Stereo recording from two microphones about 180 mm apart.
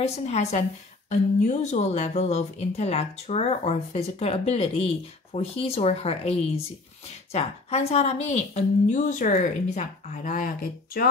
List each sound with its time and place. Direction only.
0.0 s speech: 35° left (ahead or behind); by 11.1 s 55° left (ahead or behind)